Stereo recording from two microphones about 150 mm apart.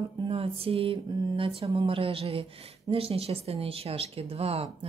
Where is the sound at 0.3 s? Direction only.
40° right (ahead or behind).